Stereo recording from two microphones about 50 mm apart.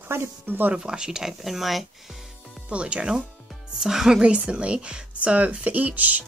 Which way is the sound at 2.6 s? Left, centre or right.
Right.